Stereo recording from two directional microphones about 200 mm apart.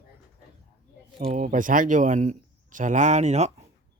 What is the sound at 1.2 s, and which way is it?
A man's voice, 35° right (ahead or behind).